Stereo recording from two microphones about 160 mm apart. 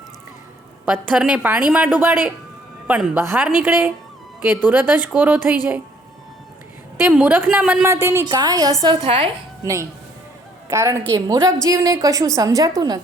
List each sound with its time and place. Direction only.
0.9 s a woman's voice: 10° right (ahead or behind)
7.0 s a woman's voice: 10° right (ahead or behind)
8.0 s a woman's voice: 20° right (ahead or behind)
9.0 s speech: 35° right (ahead or behind)
10.7 s a woman's voice: 20° right (ahead or behind)